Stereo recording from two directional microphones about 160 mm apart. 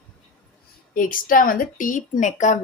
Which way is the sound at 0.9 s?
55° left (ahead or behind).